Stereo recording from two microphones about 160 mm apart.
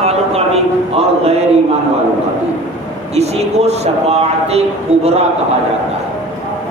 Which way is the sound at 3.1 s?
40° right (ahead or behind).